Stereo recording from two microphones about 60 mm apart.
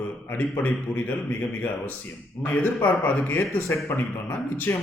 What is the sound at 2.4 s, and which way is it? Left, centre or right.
A man's voice, left.